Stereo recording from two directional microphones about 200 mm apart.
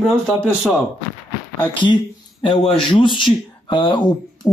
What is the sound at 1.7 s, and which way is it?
Speech, 25° left (ahead or behind).